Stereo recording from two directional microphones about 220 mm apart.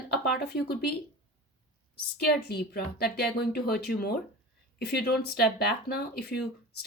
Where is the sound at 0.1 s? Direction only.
45° left (ahead or behind).